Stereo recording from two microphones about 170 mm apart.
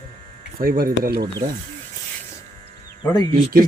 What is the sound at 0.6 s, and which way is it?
Speech, 60° right (ahead or behind).